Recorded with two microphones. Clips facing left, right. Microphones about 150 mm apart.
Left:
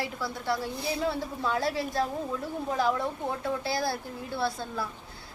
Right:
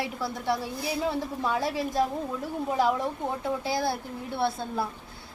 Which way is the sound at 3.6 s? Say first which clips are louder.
Right 2 dB; 20° right (ahead or behind).